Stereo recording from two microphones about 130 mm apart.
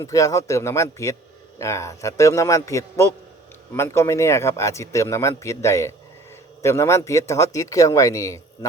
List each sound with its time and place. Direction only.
0.0 s speech: 25° left (ahead or behind)